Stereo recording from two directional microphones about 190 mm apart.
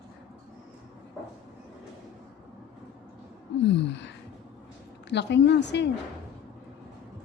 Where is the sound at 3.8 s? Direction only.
65° left (ahead or behind).